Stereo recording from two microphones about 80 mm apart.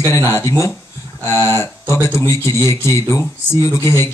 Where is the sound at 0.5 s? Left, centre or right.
Left.